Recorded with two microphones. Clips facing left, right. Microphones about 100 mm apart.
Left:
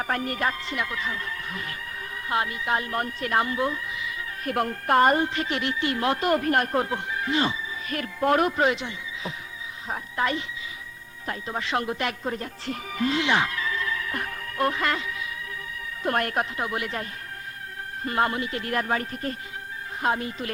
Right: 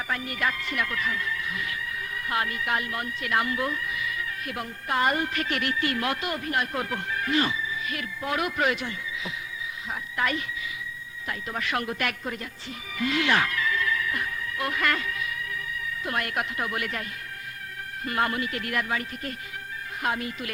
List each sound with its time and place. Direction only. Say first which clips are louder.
0.0 s speech: left 3 dB; 45° left (ahead or behind)
2.3 s speech: left 2 dB; 25° left (ahead or behind)
4.4 s speech: left 11 dB; 55° left (ahead or behind)
5.1 s speech: left 3 dB; 25° left (ahead or behind)
6.2 s speech: left 6 dB; 50° left (ahead or behind)
6.7 s speech: left 4 dB; 25° left (ahead or behind)
7.9 s speech: left 11 dB; 45° left (ahead or behind)
8.5 s speech: left 3 dB; 25° left (ahead or behind)
13.1 s music: right 2 dB; 20° left (ahead or behind); by 14.7 s 45° left (ahead or behind)
14.7 s speech: even; 25° left (ahead or behind)
16.0 s speech: left 5 dB; 40° left (ahead or behind)